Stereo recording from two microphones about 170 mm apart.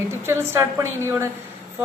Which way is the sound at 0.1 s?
15° right (ahead or behind).